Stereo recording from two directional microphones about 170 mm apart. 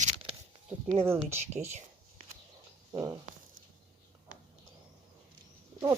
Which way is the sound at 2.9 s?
20° right (ahead or behind).